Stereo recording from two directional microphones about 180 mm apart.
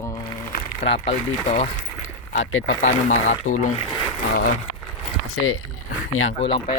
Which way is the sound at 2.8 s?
45° left (ahead or behind).